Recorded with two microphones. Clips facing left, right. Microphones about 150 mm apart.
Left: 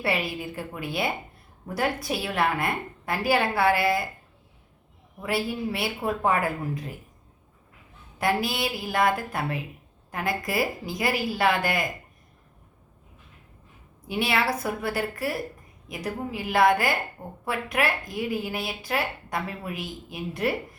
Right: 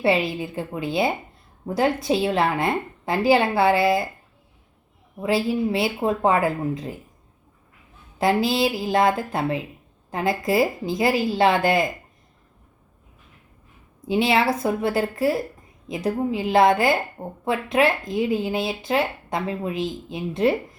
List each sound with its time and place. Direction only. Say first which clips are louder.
0.0 s a woman's voice: right 7 dB; 25° right (ahead or behind)
5.2 s a woman's voice: right 6 dB; 25° right (ahead or behind)
8.2 s a woman's voice: right 6 dB; 25° right (ahead or behind)
14.1 s a woman's voice: right 6 dB; 25° right (ahead or behind)